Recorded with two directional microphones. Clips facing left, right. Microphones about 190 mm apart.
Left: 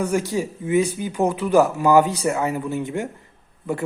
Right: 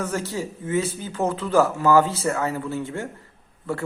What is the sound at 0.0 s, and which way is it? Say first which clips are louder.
Speech: left 5 dB; 15° left (ahead or behind).